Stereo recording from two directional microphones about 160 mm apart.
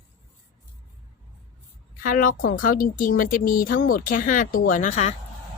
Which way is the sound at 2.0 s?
60° left (ahead or behind).